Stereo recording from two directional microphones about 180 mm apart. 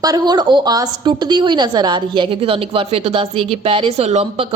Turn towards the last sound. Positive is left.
turn(degrees=-35)  # may be behind; listen again after turning